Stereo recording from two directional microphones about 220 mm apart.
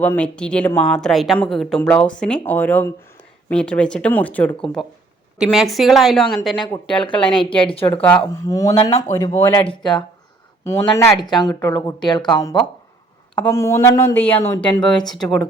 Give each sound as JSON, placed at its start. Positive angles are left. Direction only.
{"t": 0.0, "sound": "a woman's voice", "side_deg": 5}
{"t": 6.9, "sound": "speech", "side_deg": 20}
{"t": 8.0, "sound": "a woman's voice", "side_deg": 10}
{"t": 13.3, "sound": "a woman's voice", "side_deg": 10}